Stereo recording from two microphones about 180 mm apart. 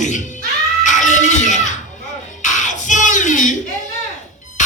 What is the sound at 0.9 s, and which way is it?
Music, 45° left (ahead or behind).